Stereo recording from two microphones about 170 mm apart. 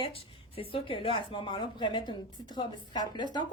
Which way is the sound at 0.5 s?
35° left (ahead or behind).